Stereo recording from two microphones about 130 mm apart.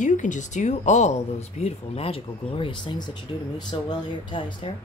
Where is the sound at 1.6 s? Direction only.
50° left (ahead or behind).